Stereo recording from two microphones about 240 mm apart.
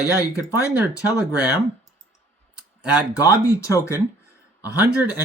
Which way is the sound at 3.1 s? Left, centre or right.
Centre.